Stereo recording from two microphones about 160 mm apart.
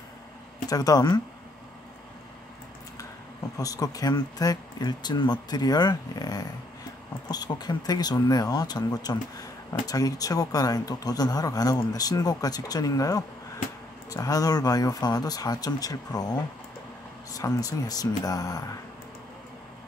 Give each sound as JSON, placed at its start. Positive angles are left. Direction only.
{"t": 0.7, "sound": "speech", "side_deg": 25}
{"t": 3.5, "sound": "speech", "side_deg": 20}